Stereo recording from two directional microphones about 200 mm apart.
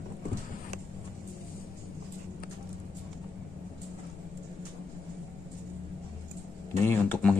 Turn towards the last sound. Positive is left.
turn(degrees=10)  # may be behind; listen again after turning